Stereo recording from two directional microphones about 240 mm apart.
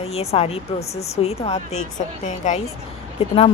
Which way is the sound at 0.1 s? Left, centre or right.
Left.